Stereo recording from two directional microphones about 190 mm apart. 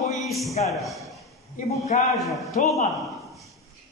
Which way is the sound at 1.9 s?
40° left (ahead or behind).